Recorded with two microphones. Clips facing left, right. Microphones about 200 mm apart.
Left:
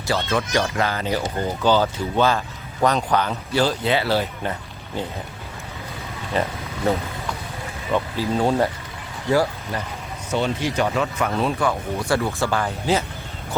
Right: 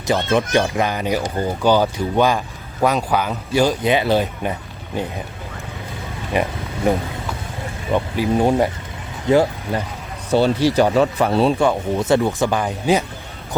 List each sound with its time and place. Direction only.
0.1 s speech: 15° right (ahead or behind)
6.3 s speech: 15° right (ahead or behind)
7.9 s speech: 15° right (ahead or behind)
10.3 s speech: 35° right (ahead or behind); by 13.1 s 15° right (ahead or behind)